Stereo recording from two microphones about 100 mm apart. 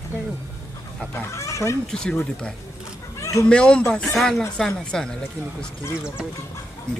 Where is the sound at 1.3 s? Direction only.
30° left (ahead or behind).